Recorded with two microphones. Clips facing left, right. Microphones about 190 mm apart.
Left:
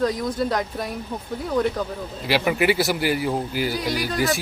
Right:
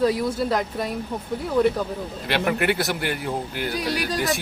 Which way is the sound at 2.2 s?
5° left (ahead or behind).